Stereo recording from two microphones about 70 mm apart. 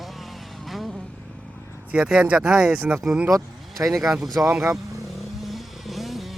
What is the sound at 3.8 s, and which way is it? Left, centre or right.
Speech, right.